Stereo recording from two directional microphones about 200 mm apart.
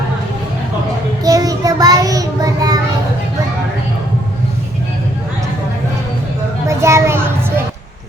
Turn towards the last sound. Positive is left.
turn(degrees=-15)  # may be behind; listen again after turning